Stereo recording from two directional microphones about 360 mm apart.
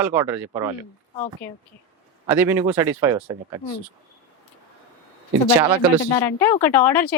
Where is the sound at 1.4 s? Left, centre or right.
Centre.